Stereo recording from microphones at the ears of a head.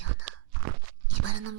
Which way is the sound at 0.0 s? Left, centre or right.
Right.